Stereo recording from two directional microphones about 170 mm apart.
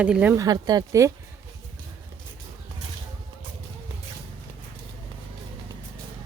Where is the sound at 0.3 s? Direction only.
25° right (ahead or behind).